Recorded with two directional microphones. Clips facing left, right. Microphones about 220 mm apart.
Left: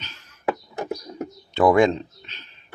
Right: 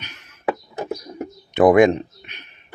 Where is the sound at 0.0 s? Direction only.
15° right (ahead or behind).